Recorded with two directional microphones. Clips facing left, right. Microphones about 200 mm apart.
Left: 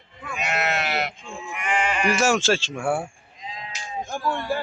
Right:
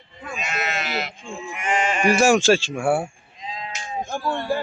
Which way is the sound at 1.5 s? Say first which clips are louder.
Right 2 dB; 45° right (ahead or behind).